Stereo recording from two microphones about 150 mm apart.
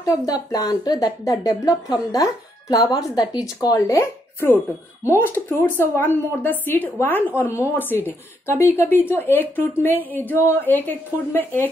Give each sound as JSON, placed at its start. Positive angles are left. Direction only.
{"t": 0.0, "sound": "a woman's voice", "side_deg": 25}
{"t": 7.5, "sound": "speech", "side_deg": -10}
{"t": 8.1, "sound": "speech", "side_deg": 15}